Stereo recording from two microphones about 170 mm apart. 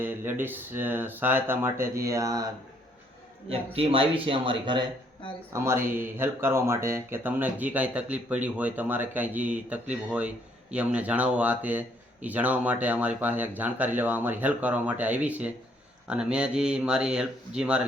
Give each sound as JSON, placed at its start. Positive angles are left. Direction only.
{"t": 0.0, "sound": "speech", "side_deg": -10}
{"t": 3.5, "sound": "speech", "side_deg": -35}
{"t": 5.5, "sound": "speech", "side_deg": -15}